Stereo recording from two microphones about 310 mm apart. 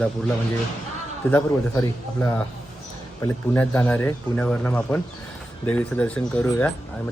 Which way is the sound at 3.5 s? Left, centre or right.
Centre.